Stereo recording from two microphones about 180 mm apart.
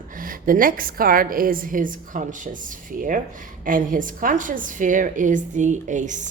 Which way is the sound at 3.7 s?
50° right (ahead or behind).